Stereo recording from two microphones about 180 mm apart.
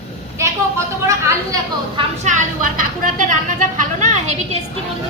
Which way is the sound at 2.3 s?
40° right (ahead or behind).